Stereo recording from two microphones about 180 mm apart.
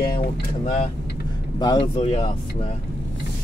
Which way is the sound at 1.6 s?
25° left (ahead or behind).